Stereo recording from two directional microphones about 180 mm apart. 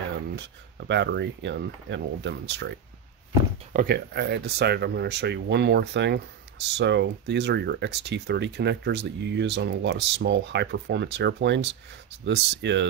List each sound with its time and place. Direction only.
0.4 s speech: 75° right (ahead or behind)
3.7 s speech: 60° right (ahead or behind)